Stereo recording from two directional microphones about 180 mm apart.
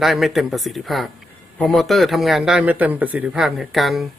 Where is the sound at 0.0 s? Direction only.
Centre (ahead or behind).